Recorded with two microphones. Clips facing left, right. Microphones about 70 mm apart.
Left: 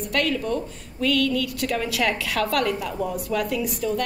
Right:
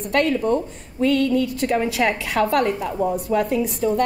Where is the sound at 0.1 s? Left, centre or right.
Right.